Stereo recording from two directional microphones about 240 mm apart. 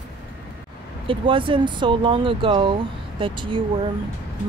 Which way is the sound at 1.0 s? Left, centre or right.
Right.